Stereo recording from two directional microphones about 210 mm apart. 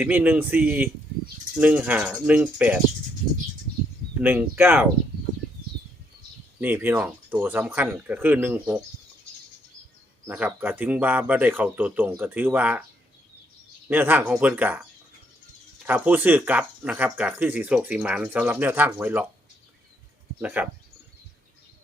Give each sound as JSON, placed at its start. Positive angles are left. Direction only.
{"t": 0.0, "sound": "speech", "side_deg": -10}
{"t": 4.2, "sound": "speech", "side_deg": -10}
{"t": 6.6, "sound": "speech", "side_deg": -10}
{"t": 10.2, "sound": "speech", "side_deg": -10}
{"t": 13.9, "sound": "speech", "side_deg": -10}
{"t": 15.9, "sound": "speech", "side_deg": -5}
{"t": 20.4, "sound": "speech", "side_deg": -5}